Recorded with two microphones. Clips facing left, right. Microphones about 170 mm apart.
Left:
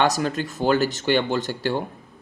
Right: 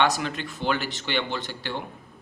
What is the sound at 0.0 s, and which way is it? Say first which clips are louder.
Speech: left 3 dB; 40° left (ahead or behind).